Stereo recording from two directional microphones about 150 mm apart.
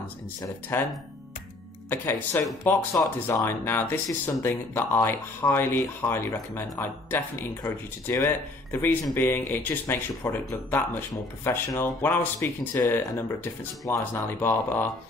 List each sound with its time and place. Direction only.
0.4 s speech: 15° left (ahead or behind)
1.9 s speech: 15° left (ahead or behind)